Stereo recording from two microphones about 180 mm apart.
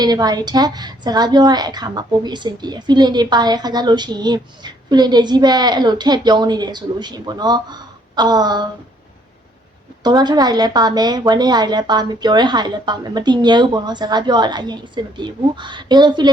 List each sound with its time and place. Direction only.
0.0 s a woman's voice: 20° right (ahead or behind)
10.0 s a woman's voice: 25° right (ahead or behind)